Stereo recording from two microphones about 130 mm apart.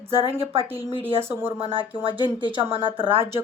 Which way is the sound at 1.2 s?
15° right (ahead or behind).